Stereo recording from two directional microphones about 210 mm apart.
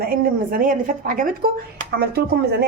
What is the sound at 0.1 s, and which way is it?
A woman's voice, 40° right (ahead or behind).